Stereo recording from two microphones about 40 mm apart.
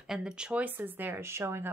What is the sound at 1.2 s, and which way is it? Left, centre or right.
Speech, right.